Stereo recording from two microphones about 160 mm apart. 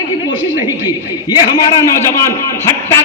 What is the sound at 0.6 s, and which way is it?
A man's voice, 25° left (ahead or behind).